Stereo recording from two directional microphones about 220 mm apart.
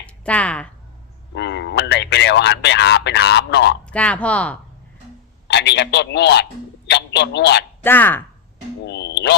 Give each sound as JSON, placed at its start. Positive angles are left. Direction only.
{"t": 0.3, "sound": "speech", "side_deg": 5}
{"t": 1.3, "sound": "speech", "side_deg": 50}
{"t": 3.8, "sound": "speech", "side_deg": 5}
{"t": 5.5, "sound": "speech", "side_deg": 50}
{"t": 7.9, "sound": "speech", "side_deg": 10}
{"t": 8.8, "sound": "a sound", "side_deg": 50}